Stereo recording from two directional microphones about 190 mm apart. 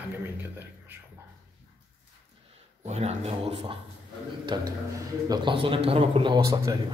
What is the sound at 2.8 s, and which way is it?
A man's voice, 35° right (ahead or behind).